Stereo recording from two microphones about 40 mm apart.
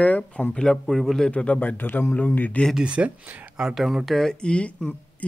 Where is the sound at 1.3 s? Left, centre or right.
Left.